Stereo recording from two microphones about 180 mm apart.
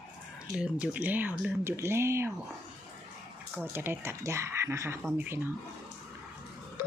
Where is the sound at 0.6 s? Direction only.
5° right (ahead or behind).